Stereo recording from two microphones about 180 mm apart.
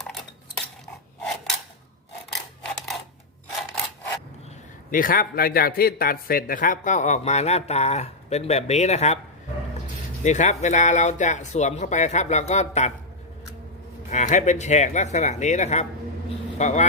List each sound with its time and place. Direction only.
2.3 s rub: centre (ahead or behind)
4.9 s a man's voice: 50° left (ahead or behind)
10.2 s a man's voice: 40° left (ahead or behind)
14.1 s a man's voice: 40° left (ahead or behind)